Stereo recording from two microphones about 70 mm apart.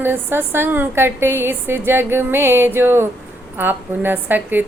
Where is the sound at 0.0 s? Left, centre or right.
Right.